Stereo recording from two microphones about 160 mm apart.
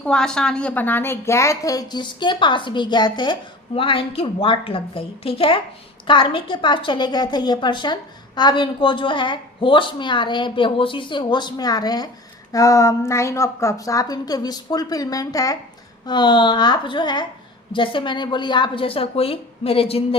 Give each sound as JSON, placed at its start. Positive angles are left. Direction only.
{"t": 0.0, "sound": "a woman's voice", "side_deg": 5}